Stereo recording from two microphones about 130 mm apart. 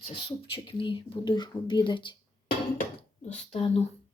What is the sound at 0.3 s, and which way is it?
Speech, 40° left (ahead or behind).